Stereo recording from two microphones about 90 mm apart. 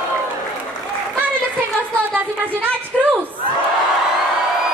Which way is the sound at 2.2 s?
20° right (ahead or behind).